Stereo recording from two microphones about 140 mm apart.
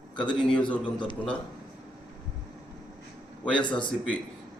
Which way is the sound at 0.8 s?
35° left (ahead or behind).